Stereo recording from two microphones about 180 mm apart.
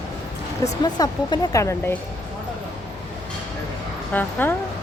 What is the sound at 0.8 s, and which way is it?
Speech, 20° left (ahead or behind).